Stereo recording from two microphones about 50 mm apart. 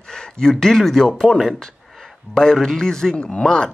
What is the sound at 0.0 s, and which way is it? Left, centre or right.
Speech, centre.